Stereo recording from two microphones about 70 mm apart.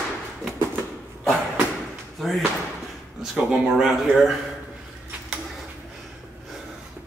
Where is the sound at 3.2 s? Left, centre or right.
Centre.